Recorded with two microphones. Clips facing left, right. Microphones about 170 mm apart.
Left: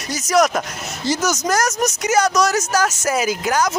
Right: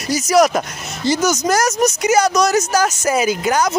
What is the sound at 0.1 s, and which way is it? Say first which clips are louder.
Speech: right 3 dB; 5° right (ahead or behind).